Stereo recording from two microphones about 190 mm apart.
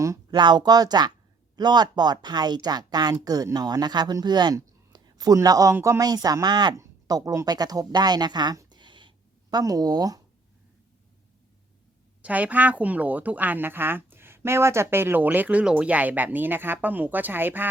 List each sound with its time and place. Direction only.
0.0 s a woman's voice: 20° right (ahead or behind)
12.2 s a woman's voice: 5° right (ahead or behind)